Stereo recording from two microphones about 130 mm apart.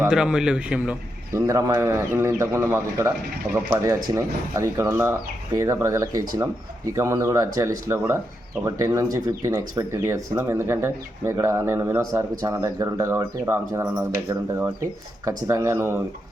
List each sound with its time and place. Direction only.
0.1 s speech: 5° right (ahead or behind)
1.3 s speech: 25° right (ahead or behind)
15.4 s speech: 25° right (ahead or behind)